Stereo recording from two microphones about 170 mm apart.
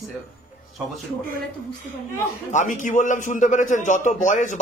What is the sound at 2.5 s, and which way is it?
A man's voice, 45° left (ahead or behind).